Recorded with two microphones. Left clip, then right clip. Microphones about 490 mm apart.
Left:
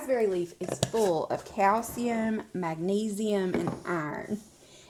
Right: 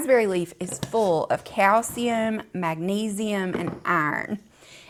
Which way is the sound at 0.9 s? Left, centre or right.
Right.